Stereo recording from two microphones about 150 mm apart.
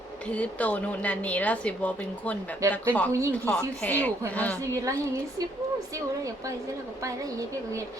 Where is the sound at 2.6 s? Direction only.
20° right (ahead or behind).